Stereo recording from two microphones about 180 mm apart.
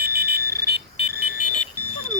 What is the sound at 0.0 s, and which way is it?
Smoke detector, 60° right (ahead or behind).